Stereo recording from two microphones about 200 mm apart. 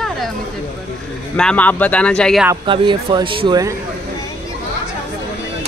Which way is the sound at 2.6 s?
25° right (ahead or behind).